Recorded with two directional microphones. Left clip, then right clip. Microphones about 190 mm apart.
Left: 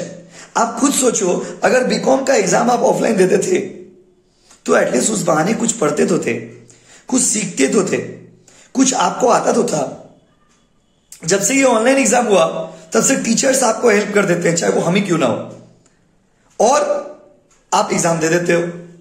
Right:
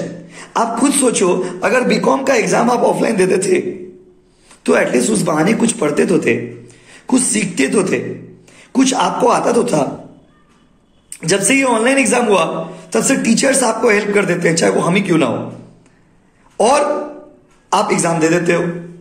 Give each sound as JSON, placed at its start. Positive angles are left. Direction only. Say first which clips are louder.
{"t": 0.3, "sound": "a man's voice", "louder": "even", "side_deg": 15}
{"t": 4.6, "sound": "a man's voice", "louder": "right 1 dB", "side_deg": 20}
{"t": 11.1, "sound": "a man's voice", "louder": "right 1 dB", "side_deg": 20}
{"t": 16.5, "sound": "a man's voice", "louder": "right 1 dB", "side_deg": 15}